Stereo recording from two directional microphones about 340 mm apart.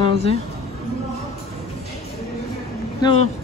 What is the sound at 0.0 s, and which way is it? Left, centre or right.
Speech, centre.